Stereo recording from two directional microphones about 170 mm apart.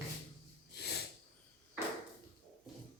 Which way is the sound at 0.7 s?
70° left (ahead or behind).